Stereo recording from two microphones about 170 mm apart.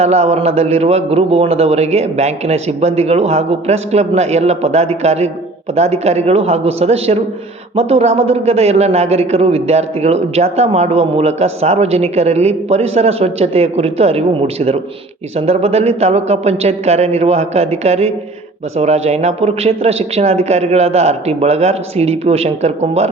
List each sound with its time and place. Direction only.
0.0 s a man's voice: 40° right (ahead or behind)